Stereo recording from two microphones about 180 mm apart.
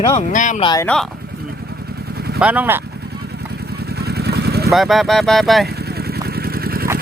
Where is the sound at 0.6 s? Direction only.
20° left (ahead or behind).